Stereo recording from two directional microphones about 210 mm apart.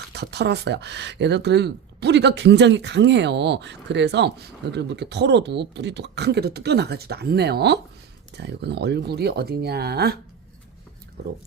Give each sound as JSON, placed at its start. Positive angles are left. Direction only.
{"t": 0.1, "sound": "speech", "side_deg": -50}
{"t": 11.2, "sound": "speech", "side_deg": -50}